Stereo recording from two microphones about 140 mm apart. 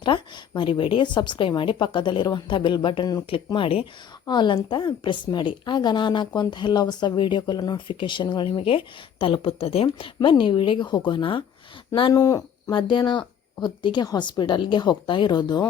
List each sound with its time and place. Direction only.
0.0 s a woman's voice: 35° left (ahead or behind)
12.1 s speech: 20° left (ahead or behind)
12.7 s a woman's voice: 35° left (ahead or behind)